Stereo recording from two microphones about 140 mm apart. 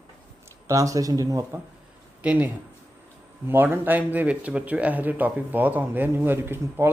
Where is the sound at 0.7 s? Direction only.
25° right (ahead or behind).